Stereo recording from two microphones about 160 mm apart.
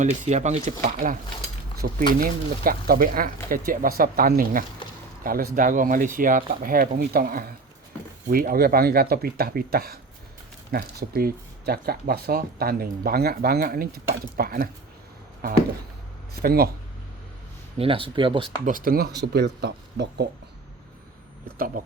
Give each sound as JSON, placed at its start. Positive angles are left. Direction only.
{"t": 0.0, "sound": "speech", "side_deg": -50}
{"t": 0.9, "sound": "speech", "side_deg": -60}
{"t": 16.4, "sound": "speech", "side_deg": -75}
{"t": 17.7, "sound": "speech", "side_deg": -35}
{"t": 18.6, "sound": "speech", "side_deg": -60}
{"t": 21.4, "sound": "speech", "side_deg": -65}